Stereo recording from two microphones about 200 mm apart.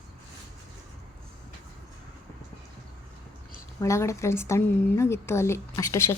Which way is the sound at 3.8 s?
15° left (ahead or behind).